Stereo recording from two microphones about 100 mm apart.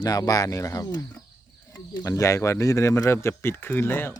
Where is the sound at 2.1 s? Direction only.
30° left (ahead or behind).